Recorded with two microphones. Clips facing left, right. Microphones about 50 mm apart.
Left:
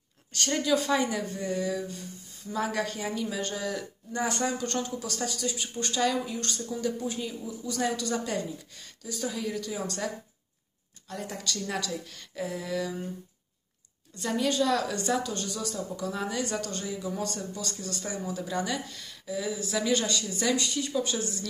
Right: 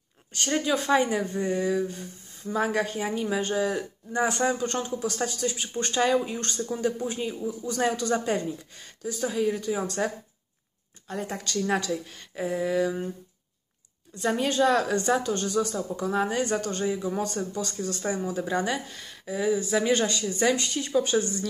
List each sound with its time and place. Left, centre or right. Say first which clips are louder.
0.3 s a woman's voice: right 1 dB; right
11.9 s speech: right 5 dB; centre
14.2 s a woman's voice: right 4 dB; right